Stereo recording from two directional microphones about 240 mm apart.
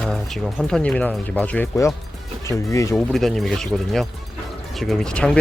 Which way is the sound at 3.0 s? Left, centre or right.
Centre.